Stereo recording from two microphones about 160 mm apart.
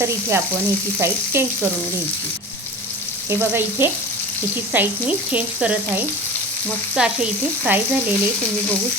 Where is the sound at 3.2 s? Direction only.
15° right (ahead or behind).